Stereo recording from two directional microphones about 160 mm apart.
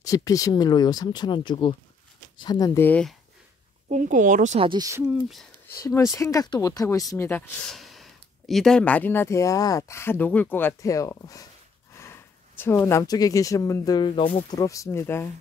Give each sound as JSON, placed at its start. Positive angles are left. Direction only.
{"t": 0.0, "sound": "speech", "side_deg": 20}
{"t": 3.9, "sound": "speech", "side_deg": -55}
{"t": 4.6, "sound": "speech", "side_deg": -30}
{"t": 5.0, "sound": "speech", "side_deg": -5}
{"t": 5.9, "sound": "speech", "side_deg": 20}
{"t": 14.6, "sound": "speech", "side_deg": 20}